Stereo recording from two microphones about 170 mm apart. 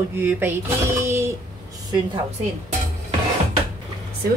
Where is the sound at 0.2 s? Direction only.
10° right (ahead or behind).